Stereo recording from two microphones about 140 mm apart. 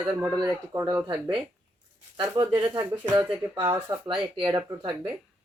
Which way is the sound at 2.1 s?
35° right (ahead or behind).